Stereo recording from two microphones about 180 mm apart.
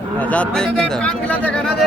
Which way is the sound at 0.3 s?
5° left (ahead or behind).